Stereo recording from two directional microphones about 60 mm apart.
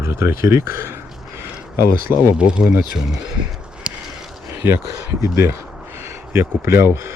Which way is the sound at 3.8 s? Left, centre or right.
Centre.